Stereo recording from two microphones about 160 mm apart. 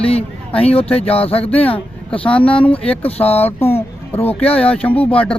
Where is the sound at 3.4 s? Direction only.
15° left (ahead or behind).